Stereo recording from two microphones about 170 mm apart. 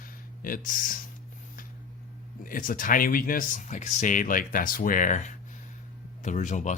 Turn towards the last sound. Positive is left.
turn(degrees=45)  # may be behind; listen again after turning